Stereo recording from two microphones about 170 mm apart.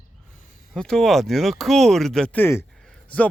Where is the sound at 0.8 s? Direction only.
5° left (ahead or behind).